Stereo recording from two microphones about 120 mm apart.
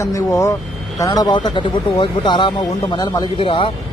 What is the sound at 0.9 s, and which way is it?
A man's voice, 30° left (ahead or behind).